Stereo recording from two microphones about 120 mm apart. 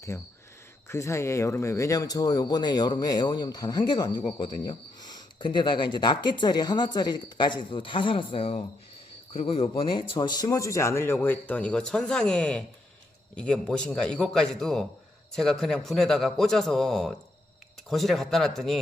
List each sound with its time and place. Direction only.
0.1 s a man's voice: 25° left (ahead or behind); by 18.8 s centre (ahead or behind)